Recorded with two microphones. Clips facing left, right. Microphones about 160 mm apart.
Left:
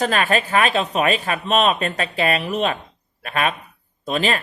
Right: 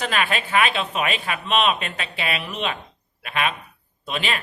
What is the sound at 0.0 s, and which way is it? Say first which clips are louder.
A man's voice: left 5 dB; 40° left (ahead or behind).